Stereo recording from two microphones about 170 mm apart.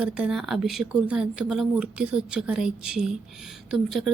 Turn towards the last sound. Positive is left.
turn(degrees=0)  # may be behind; listen again after turning